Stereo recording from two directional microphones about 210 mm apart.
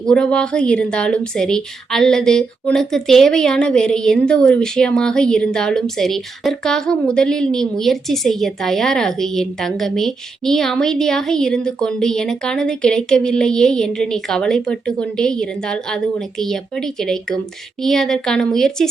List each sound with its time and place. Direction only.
0.0 s a woman's voice: 5° left (ahead or behind)